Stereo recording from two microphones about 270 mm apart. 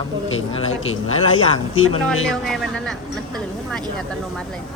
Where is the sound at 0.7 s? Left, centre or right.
Left.